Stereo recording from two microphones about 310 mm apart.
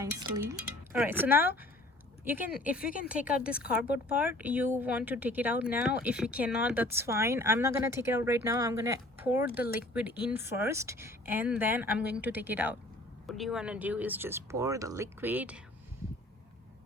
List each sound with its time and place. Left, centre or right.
0.9 s speech: centre
2.8 s speech: left
3.1 s speech: centre